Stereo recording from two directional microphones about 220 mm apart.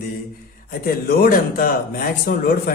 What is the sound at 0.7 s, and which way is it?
Speech, 40° left (ahead or behind).